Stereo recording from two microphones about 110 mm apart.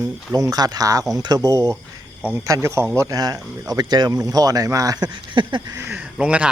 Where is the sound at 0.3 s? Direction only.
35° right (ahead or behind); by 5.7 s 50° right (ahead or behind).